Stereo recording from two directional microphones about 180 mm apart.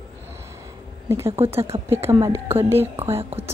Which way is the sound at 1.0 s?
15° right (ahead or behind).